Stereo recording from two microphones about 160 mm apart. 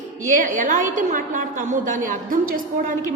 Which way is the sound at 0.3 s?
55° right (ahead or behind).